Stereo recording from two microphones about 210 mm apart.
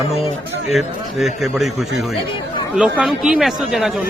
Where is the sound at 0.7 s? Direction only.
Centre (ahead or behind).